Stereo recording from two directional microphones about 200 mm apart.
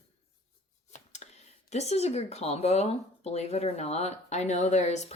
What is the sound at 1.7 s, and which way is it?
Speech, 35° left (ahead or behind).